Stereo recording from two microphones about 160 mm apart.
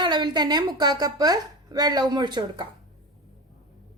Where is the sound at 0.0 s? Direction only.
30° right (ahead or behind).